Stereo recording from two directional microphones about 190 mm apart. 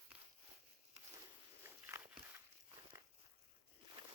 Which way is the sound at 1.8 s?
10° right (ahead or behind).